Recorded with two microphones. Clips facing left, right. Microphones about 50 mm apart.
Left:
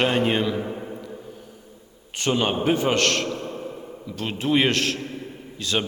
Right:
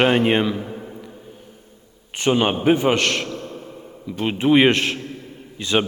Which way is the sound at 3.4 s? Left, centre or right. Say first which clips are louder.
Left 2 dB; centre.